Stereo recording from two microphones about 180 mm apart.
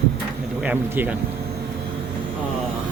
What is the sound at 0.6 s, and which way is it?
Speech, 10° right (ahead or behind).